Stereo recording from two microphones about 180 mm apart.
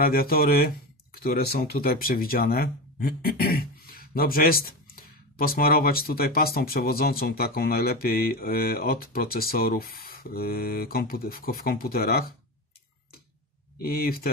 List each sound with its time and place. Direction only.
0.0 s speech: 55° left (ahead or behind)
13.7 s speech: 55° left (ahead or behind)